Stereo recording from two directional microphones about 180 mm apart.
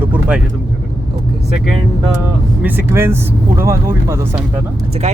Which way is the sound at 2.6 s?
10° right (ahead or behind).